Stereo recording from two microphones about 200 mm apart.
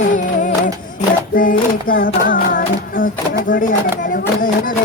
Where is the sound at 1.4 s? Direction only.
45° left (ahead or behind).